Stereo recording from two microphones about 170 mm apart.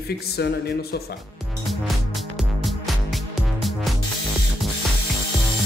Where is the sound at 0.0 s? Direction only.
70° left (ahead or behind).